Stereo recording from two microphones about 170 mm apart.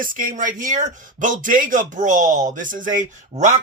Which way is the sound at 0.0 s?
55° right (ahead or behind).